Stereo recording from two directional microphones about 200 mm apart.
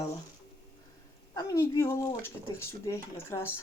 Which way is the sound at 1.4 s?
15° left (ahead or behind).